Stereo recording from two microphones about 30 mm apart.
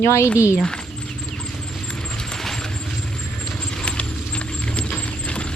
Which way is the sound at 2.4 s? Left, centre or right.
Centre.